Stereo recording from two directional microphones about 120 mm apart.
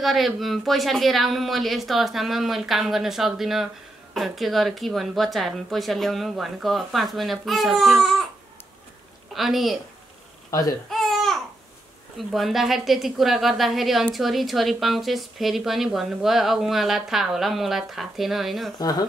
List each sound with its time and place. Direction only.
0.0 s speech: centre (ahead or behind)
9.3 s a woman's voice: centre (ahead or behind)
10.5 s speech: 30° left (ahead or behind)
10.9 s babbling: centre (ahead or behind)
12.2 s speech: centre (ahead or behind)
18.8 s speech: 35° left (ahead or behind)